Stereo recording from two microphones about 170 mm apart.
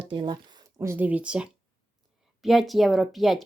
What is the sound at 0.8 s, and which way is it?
Speech, 10° right (ahead or behind).